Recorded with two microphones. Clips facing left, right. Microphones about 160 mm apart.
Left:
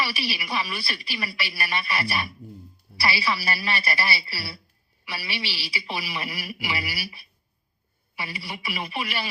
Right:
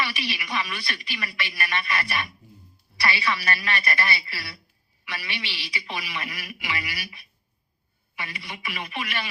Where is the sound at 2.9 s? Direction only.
55° left (ahead or behind).